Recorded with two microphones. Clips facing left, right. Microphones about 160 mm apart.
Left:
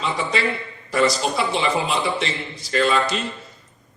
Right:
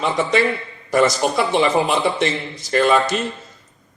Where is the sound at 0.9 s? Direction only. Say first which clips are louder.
Right 3 dB; 50° right (ahead or behind).